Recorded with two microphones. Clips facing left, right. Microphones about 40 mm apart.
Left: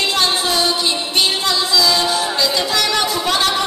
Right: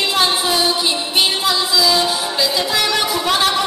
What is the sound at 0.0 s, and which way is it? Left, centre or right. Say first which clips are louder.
Music: right 1 dB; centre.